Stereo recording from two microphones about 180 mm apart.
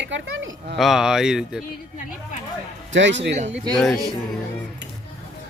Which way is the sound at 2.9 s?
85° right.